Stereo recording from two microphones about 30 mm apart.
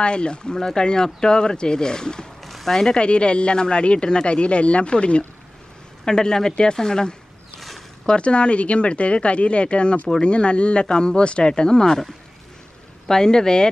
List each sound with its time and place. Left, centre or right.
0.0 s speech: left
2.4 s a sound: centre
3.0 s speech: left
6.0 s speech: left
8.2 s speech: left
13.1 s speech: left